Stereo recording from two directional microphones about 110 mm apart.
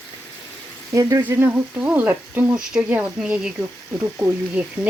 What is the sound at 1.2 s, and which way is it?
Speech, 15° right (ahead or behind).